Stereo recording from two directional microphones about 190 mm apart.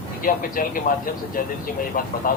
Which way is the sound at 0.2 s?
45° left (ahead or behind).